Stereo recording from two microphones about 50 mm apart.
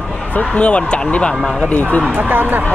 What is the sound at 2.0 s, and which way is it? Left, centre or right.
Speech, right.